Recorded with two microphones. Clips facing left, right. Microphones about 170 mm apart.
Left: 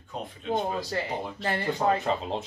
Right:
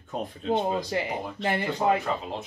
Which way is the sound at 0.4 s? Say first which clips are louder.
Right 2 dB; 25° right (ahead or behind).